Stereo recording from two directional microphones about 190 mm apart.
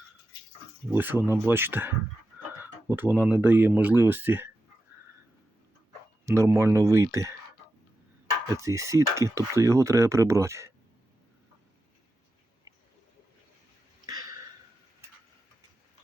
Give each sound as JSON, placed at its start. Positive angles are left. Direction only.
{"t": 0.9, "sound": "speech", "side_deg": -10}
{"t": 6.2, "sound": "speech", "side_deg": -15}
{"t": 8.5, "sound": "speech", "side_deg": -15}
{"t": 14.1, "sound": "a sound", "side_deg": -20}